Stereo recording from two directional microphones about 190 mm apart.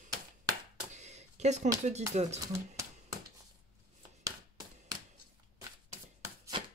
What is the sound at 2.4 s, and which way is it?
Speech, 15° right (ahead or behind).